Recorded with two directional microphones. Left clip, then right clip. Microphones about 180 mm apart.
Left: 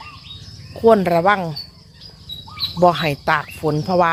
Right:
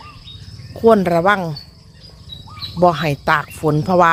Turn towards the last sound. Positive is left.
turn(degrees=-25)  # may be behind; listen again after turning